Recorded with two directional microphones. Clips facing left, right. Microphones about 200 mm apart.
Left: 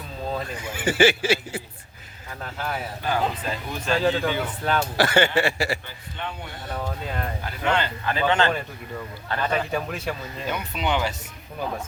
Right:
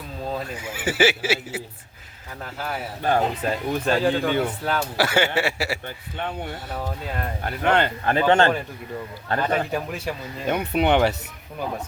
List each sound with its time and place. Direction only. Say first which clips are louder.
0.3 s speech: even; 5° right (ahead or behind)
3.0 s a man's voice: right 5 dB; 45° right (ahead or behind)
4.6 s speech: left 1 dB; 5° right (ahead or behind)
6.1 s a man's voice: right 4 dB; 50° right (ahead or behind)
6.7 s speech: left 5 dB; 5° right (ahead or behind)
7.4 s a man's voice: right 5 dB; 55° right (ahead or behind)
9.4 s speech: right 1 dB; 10° right (ahead or behind)
10.4 s speech: right 7 dB; 55° right (ahead or behind)